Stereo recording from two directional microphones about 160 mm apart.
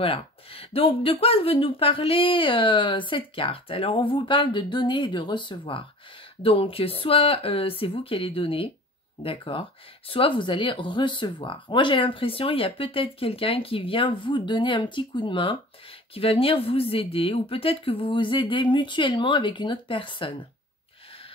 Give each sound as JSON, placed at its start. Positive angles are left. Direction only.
{"t": 0.0, "sound": "speech", "side_deg": 35}